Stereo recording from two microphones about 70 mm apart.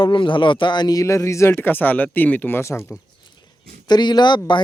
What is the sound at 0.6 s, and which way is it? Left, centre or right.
Speech, left.